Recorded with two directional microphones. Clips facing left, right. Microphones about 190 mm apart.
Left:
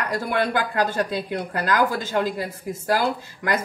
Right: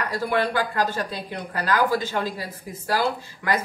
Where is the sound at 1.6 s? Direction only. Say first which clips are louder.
Right 1 dB; 50° left (ahead or behind).